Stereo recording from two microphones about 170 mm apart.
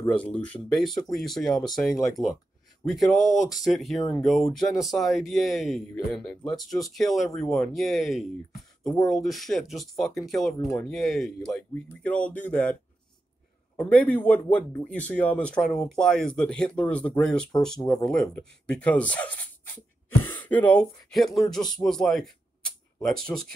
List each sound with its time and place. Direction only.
0.2 s speech: 5° left (ahead or behind)
8.8 s speech: 20° left (ahead or behind)
9.1 s speech: centre (ahead or behind)
13.7 s speech: 10° left (ahead or behind)
23.3 s speech: 10° left (ahead or behind)